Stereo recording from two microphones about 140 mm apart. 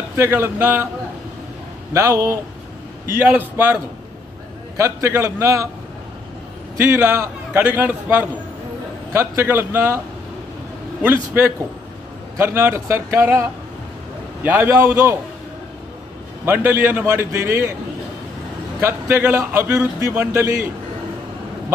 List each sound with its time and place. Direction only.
0.1 s a man's voice: 15° right (ahead or behind)
2.0 s a man's voice: 20° right (ahead or behind)
4.7 s a man's voice: 20° right (ahead or behind)
6.8 s a man's voice: 20° right (ahead or behind)
12.4 s a man's voice: 15° right (ahead or behind)
16.4 s a man's voice: 15° right (ahead or behind)
18.8 s a man's voice: 20° right (ahead or behind)